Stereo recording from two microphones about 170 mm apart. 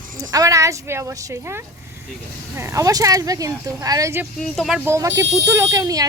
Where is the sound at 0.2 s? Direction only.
20° right (ahead or behind).